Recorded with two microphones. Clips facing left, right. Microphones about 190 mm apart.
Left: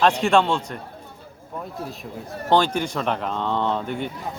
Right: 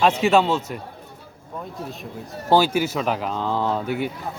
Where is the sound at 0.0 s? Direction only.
5° right (ahead or behind).